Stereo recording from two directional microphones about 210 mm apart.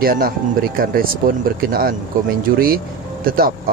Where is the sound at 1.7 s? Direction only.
45° right (ahead or behind).